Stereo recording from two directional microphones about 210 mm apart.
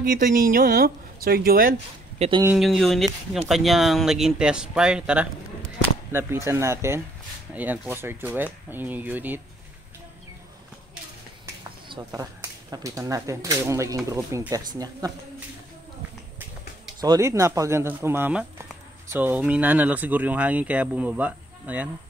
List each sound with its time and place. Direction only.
0.0 s speech: 40° right (ahead or behind)
2.1 s speech: 30° right (ahead or behind)
2.4 s speech: centre (ahead or behind)
11.9 s speech: 15° right (ahead or behind)
17.0 s speech: 15° right (ahead or behind)